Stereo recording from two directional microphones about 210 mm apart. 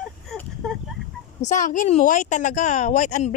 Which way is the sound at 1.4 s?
35° left (ahead or behind).